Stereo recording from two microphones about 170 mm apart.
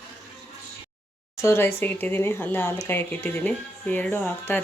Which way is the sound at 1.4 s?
15° left (ahead or behind).